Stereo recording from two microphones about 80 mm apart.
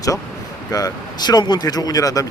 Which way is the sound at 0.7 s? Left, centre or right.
Left.